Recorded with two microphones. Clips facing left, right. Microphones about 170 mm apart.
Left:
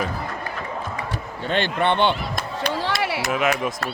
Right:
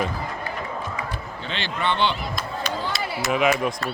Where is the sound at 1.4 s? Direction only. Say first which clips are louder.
Left 8 dB; 50° left (ahead or behind).